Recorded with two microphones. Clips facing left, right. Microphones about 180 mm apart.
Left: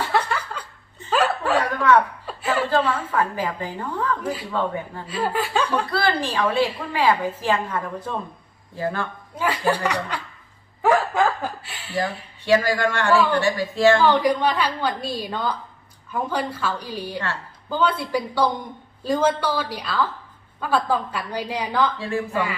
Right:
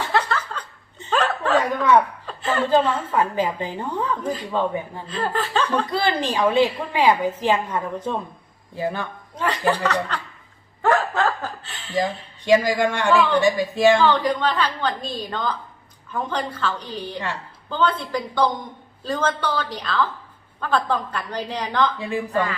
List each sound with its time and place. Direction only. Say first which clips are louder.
0.1 s laughter: even; 10° left (ahead or behind)
1.1 s chuckle: left 1 dB; 10° left (ahead or behind)
1.5 s a sound: right 1 dB; 20° right (ahead or behind)
2.2 s chuckle: even; 10° left (ahead or behind)
2.6 s a woman's voice: right 2 dB; 20° right (ahead or behind)
4.2 s a woman's voice: right 1 dB; 10° left (ahead or behind)
4.5 s speech: right 3 dB; 15° right (ahead or behind)
5.0 s a woman's voice: left 2 dB; 10° left (ahead or behind)
5.9 s a woman's voice: right 1 dB; 20° right (ahead or behind)
9.3 s a woman's voice: even; 10° left (ahead or behind)
10.8 s snicker: left 1 dB; 10° left (ahead or behind)
12.5 s speech: right 2 dB; 15° right (ahead or behind)
14.0 s a woman's voice: left 1 dB; 10° left (ahead or behind)
21.9 s speech: even; 15° right (ahead or behind)